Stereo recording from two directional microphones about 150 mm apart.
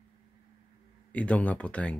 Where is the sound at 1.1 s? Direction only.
10° left (ahead or behind).